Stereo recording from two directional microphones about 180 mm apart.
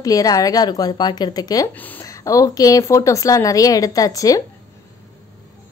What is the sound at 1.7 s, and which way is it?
A woman's voice, 10° left (ahead or behind).